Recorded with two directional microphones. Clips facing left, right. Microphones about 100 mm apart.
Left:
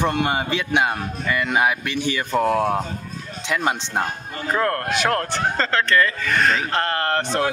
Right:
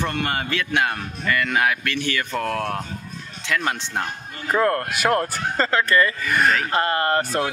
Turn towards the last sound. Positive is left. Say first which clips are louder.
# right 1 dB
turn(degrees=-5)  # may be behind; listen again after turning